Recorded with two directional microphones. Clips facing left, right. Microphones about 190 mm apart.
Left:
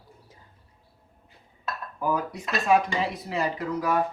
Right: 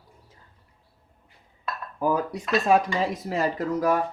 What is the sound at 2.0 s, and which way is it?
Speech, 35° right (ahead or behind).